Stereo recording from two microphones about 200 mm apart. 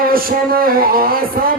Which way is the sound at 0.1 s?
45° right (ahead or behind).